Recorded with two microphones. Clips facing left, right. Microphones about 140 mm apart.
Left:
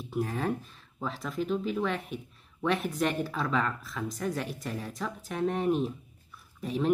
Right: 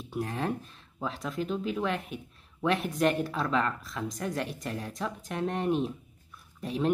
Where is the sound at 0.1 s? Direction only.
Centre (ahead or behind).